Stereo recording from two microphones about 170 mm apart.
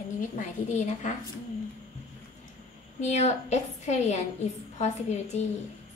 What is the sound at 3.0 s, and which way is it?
A woman's voice, 40° left (ahead or behind).